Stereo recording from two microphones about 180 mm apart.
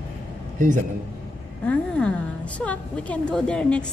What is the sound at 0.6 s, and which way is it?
Speech, 45° right (ahead or behind).